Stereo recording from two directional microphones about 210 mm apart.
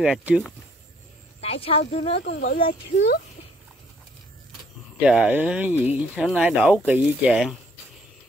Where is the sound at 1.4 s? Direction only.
25° left (ahead or behind).